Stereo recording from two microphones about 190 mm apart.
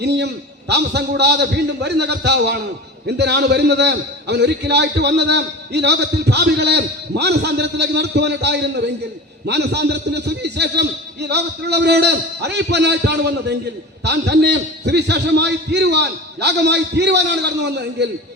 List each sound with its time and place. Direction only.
0.7 s a man's voice: 60° right (ahead or behind)